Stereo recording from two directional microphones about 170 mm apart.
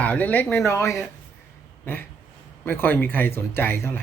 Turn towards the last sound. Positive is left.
turn(degrees=15)  # may be behind; listen again after turning